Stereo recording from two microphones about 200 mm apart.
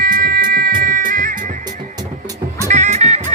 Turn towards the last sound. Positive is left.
turn(degrees=-35)  # may be behind; listen again after turning